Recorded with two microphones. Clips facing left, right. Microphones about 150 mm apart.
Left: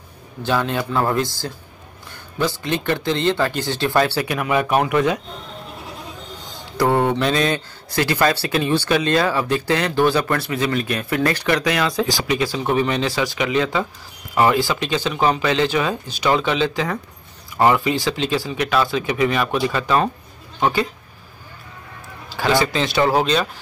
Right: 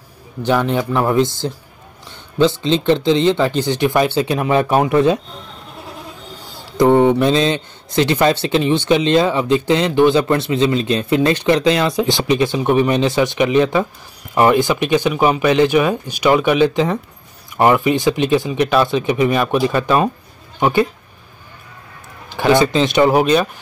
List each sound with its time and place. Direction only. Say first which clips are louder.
0.4 s speech: right 4 dB; 15° right (ahead or behind)
6.3 s a sound: right 6 dB; 10° right (ahead or behind)
6.9 s speech: right 6 dB; 20° right (ahead or behind)
22.3 s speech: right 5 dB; 20° right (ahead or behind)